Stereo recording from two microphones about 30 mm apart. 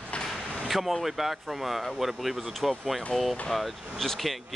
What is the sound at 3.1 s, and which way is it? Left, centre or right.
Speech, left.